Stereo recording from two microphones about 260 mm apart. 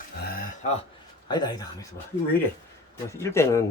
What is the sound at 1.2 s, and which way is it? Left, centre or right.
Speech, centre.